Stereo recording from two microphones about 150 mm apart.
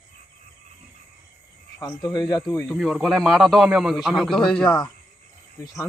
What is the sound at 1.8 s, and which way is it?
Speech, 25° left (ahead or behind).